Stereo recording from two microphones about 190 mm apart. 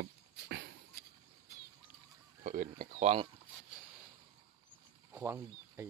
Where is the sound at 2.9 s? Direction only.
30° right (ahead or behind).